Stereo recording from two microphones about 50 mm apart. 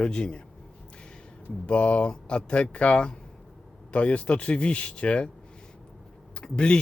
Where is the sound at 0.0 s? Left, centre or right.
Centre.